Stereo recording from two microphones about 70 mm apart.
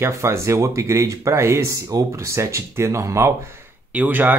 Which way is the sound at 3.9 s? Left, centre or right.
Right.